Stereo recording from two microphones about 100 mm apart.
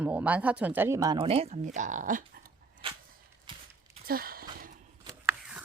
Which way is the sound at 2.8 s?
65° right (ahead or behind).